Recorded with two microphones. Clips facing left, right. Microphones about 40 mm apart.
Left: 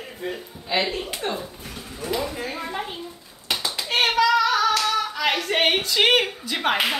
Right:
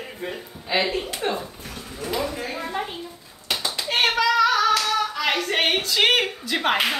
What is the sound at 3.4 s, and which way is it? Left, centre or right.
Singing, centre.